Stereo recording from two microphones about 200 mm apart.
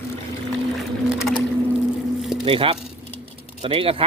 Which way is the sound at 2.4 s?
25° right (ahead or behind).